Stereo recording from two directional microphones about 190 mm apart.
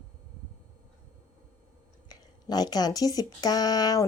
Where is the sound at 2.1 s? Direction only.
20° left (ahead or behind).